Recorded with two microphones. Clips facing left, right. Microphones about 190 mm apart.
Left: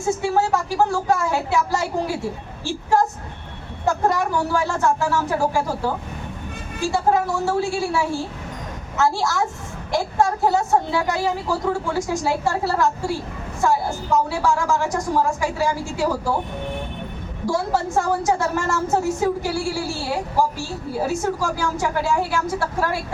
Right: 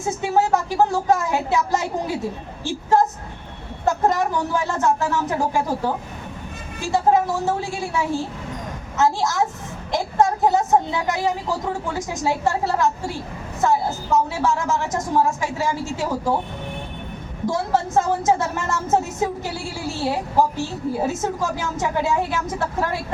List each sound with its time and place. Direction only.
0.0 s a woman's voice: 20° right (ahead or behind)
2.6 s a sound: 20° right (ahead or behind)
3.8 s a woman's voice: 20° right (ahead or behind)
17.4 s a woman's voice: 20° right (ahead or behind)